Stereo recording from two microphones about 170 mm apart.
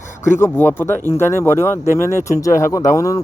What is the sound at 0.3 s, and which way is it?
A man's voice, 15° left (ahead or behind).